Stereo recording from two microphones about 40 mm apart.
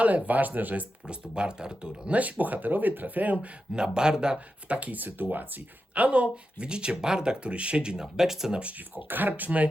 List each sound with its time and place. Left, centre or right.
0.3 s speech: right
1.0 s speech: right
2.1 s speech: right
3.8 s speech: centre
4.7 s speech: right
4.9 s speech: right
5.9 s speech: right
8.0 s speech: centre
8.5 s speech: right
9.0 s speech: right